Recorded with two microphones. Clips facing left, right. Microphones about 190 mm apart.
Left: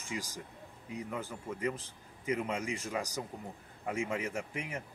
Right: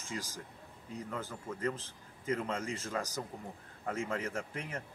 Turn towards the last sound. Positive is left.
turn(degrees=10)  # may be behind; listen again after turning